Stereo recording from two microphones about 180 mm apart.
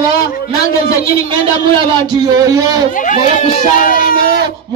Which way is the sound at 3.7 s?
50° left (ahead or behind).